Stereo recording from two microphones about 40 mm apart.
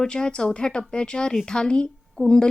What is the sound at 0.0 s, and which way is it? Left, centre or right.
Speech, centre.